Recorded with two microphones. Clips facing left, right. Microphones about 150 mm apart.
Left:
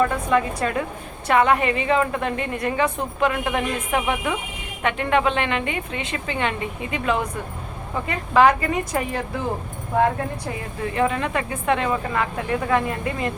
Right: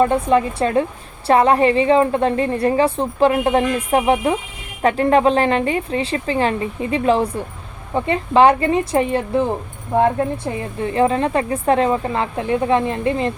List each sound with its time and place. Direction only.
0.0 s a woman's voice: 30° right (ahead or behind)